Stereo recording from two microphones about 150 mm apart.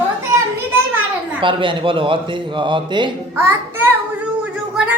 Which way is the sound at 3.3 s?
15° right (ahead or behind).